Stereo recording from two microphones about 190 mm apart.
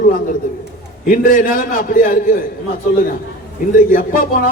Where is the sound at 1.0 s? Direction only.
45° left (ahead or behind).